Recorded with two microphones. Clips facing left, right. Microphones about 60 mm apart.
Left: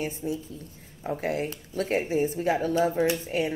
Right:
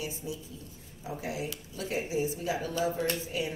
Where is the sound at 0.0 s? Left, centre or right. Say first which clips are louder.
Left 7 dB; left.